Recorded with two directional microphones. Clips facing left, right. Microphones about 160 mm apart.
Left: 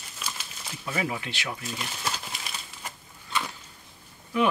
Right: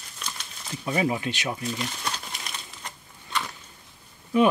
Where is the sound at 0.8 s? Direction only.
25° right (ahead or behind).